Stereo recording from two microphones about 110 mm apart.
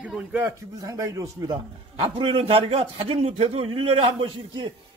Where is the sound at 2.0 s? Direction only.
55° right (ahead or behind).